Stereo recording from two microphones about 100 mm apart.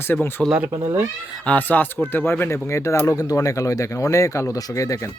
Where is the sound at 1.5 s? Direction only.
15° left (ahead or behind).